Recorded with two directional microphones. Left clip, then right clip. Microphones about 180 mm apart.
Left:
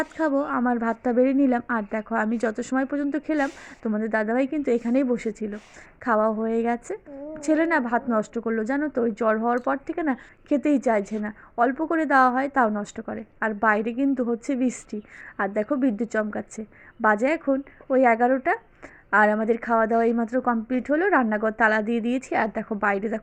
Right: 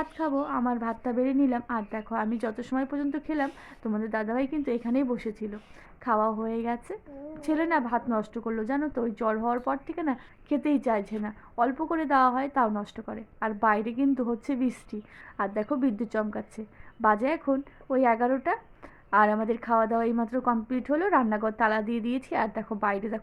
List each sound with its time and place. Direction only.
0.0 s a woman's voice: 25° left (ahead or behind)